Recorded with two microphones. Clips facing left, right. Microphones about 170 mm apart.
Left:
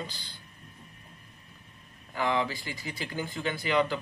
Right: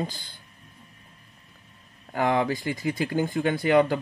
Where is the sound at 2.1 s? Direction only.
50° right (ahead or behind).